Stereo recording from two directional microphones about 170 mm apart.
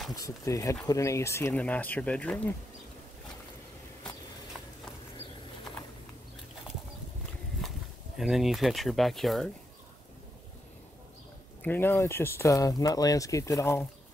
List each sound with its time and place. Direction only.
0.1 s speech: 20° left (ahead or behind)
7.6 s a sound: centre (ahead or behind)
8.2 s speech: centre (ahead or behind)
11.6 s speech: 10° left (ahead or behind)